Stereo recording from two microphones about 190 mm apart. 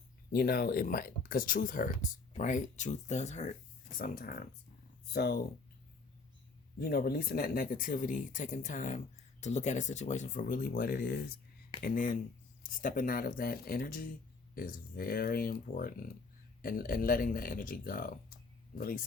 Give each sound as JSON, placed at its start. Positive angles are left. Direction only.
{"t": 0.3, "sound": "speech", "side_deg": 55}
{"t": 3.9, "sound": "speech", "side_deg": 50}
{"t": 6.7, "sound": "speech", "side_deg": 55}